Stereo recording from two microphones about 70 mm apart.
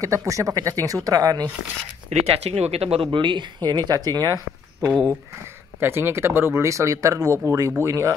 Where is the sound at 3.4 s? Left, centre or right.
Right.